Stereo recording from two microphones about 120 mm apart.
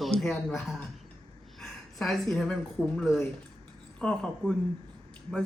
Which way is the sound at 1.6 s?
Centre (ahead or behind).